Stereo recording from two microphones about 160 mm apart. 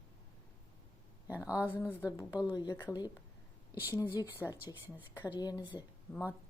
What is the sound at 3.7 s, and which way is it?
A woman's voice, 15° right (ahead or behind).